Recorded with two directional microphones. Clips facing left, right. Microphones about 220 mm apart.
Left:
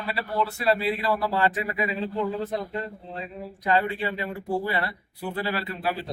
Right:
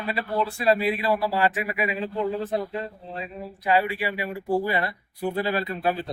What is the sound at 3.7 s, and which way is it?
A man's voice, 10° right (ahead or behind).